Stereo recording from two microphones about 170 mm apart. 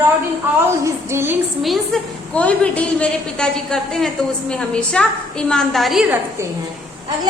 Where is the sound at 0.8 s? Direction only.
15° right (ahead or behind).